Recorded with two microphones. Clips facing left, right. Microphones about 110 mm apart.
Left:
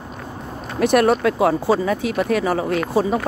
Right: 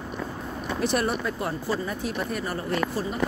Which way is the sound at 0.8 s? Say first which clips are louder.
Left 11 dB; 65° left (ahead or behind).